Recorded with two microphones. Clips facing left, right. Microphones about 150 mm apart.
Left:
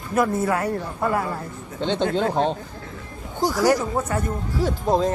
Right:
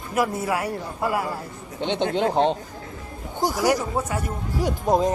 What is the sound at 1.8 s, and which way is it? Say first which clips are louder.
Speech: left 1 dB; 15° right (ahead or behind).